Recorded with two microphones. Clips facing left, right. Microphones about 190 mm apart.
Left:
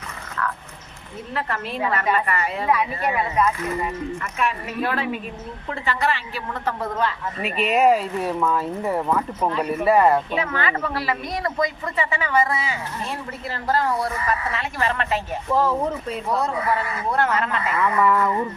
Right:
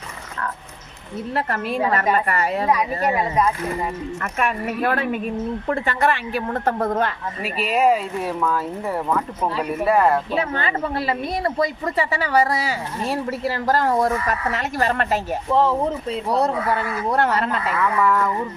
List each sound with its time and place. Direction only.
1.4 s a woman's voice: 40° right (ahead or behind)
4.2 s speech: 55° right (ahead or behind)
7.4 s speech: centre (ahead or behind)
10.3 s a woman's voice: 30° right (ahead or behind)
15.5 s a woman's voice: 25° right (ahead or behind)
17.6 s speech: centre (ahead or behind)